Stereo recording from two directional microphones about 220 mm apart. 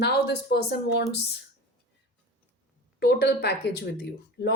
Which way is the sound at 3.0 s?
50° left (ahead or behind).